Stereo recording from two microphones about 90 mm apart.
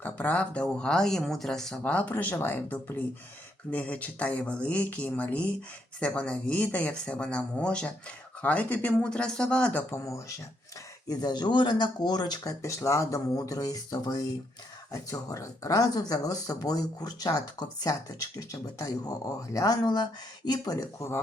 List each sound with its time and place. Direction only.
0.0 s speech: 15° left (ahead or behind)
1.8 s speech: 15° left (ahead or behind)
9.9 s speech: 35° left (ahead or behind)
11.1 s speech: 50° left (ahead or behind)